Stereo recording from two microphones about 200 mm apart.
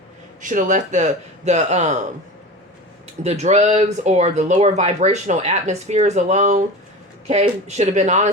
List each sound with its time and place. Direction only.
0.4 s speech: 40° right (ahead or behind)
3.2 s speech: 35° right (ahead or behind)